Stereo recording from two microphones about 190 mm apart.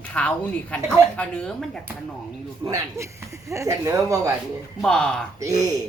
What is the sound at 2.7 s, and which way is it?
Speech, 15° right (ahead or behind).